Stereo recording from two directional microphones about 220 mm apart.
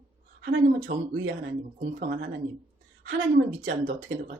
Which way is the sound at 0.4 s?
40° right (ahead or behind).